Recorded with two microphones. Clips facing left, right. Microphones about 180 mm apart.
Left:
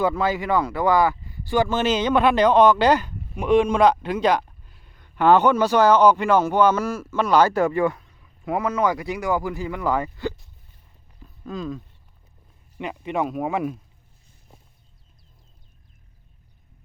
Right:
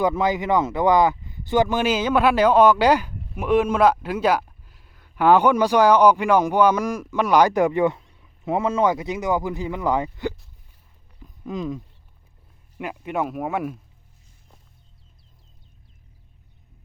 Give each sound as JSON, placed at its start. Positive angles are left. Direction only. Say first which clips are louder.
{"t": 0.0, "sound": "speech", "louder": "right 1 dB", "side_deg": -20}
{"t": 11.2, "sound": "a sound", "louder": "right 2 dB", "side_deg": -15}
{"t": 12.7, "sound": "speech", "louder": "left 1 dB", "side_deg": -5}